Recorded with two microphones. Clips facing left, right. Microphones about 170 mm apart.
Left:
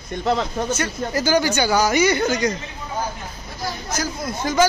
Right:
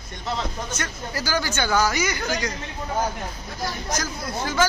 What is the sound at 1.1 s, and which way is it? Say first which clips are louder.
Speech: left 8 dB; 20° left (ahead or behind).